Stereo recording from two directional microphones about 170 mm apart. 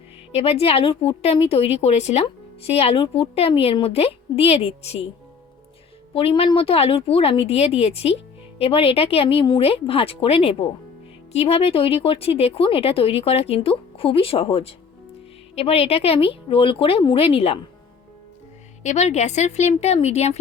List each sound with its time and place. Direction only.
0.3 s speech: 35° left (ahead or behind)
6.1 s speech: 35° left (ahead or behind)
18.8 s speech: 45° left (ahead or behind)